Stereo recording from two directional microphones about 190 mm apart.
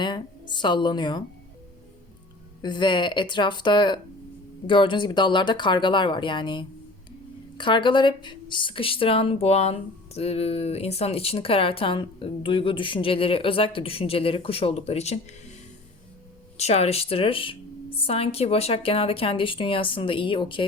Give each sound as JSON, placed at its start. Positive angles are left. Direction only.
{"t": 0.0, "sound": "speech", "side_deg": 25}
{"t": 2.6, "sound": "speech", "side_deg": 25}
{"t": 16.6, "sound": "speech", "side_deg": 35}